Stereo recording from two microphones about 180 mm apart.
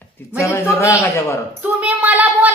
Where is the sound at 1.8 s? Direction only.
10° right (ahead or behind).